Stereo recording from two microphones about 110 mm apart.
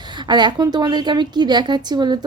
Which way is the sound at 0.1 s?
40° right (ahead or behind).